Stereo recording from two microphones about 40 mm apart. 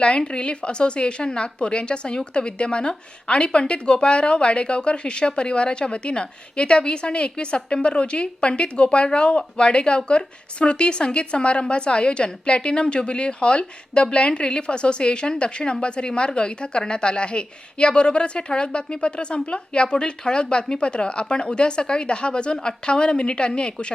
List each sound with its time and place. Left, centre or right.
0.0 s a woman's voice: left